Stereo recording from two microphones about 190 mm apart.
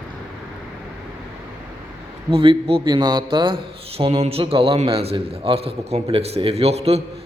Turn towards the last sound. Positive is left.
turn(degrees=-35)  # may be behind; listen again after turning